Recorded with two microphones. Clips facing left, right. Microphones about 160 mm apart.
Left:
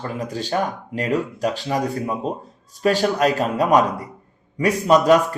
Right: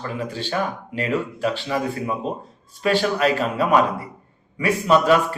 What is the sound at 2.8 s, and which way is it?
A man's voice, 40° left (ahead or behind).